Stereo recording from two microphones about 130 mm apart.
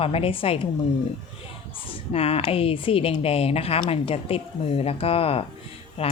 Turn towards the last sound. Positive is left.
turn(degrees=50)  # may be behind; listen again after turning